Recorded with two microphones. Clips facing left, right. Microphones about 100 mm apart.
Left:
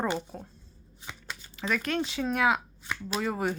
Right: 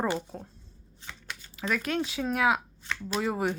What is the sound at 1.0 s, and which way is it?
Speech, 15° left (ahead or behind).